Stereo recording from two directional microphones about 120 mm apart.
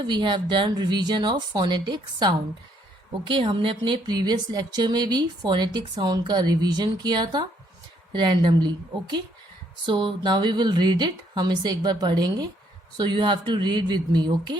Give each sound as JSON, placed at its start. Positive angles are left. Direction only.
{"t": 0.0, "sound": "speech", "side_deg": -40}